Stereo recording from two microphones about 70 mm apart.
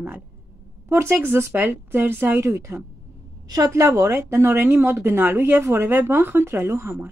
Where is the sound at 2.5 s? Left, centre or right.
Right.